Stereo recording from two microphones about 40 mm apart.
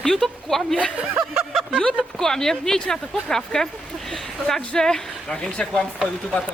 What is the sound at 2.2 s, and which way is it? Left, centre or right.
Speech, centre.